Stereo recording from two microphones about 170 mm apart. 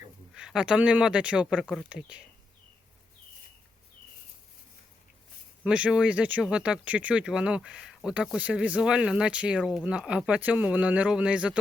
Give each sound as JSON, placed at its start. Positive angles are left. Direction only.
{"t": 0.3, "sound": "speech", "side_deg": -5}
{"t": 5.6, "sound": "speech", "side_deg": -5}